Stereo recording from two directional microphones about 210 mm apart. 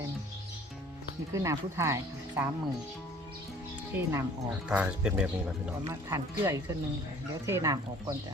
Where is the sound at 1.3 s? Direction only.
15° right (ahead or behind).